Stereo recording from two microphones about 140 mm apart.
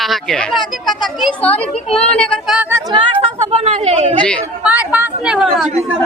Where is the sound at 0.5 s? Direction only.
30° left (ahead or behind).